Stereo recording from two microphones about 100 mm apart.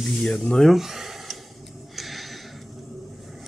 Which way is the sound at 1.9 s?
Centre (ahead or behind).